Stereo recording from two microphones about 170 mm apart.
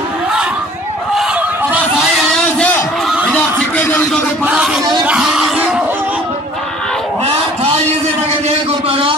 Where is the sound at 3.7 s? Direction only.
10° left (ahead or behind).